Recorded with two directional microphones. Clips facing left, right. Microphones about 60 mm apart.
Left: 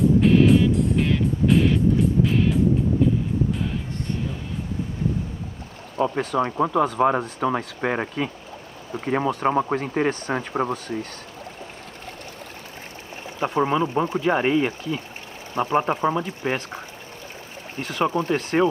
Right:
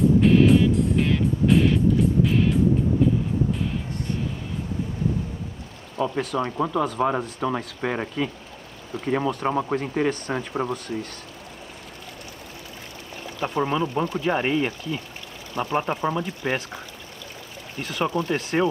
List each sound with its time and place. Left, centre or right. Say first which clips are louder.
0.2 s music: even; centre
3.0 s vehicle: even; centre
5.9 s speech: left 3 dB; left
13.2 s speech: left 3 dB; left